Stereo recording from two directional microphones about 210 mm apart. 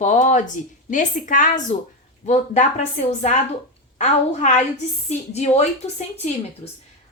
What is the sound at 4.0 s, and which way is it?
A woman's voice, 35° left (ahead or behind).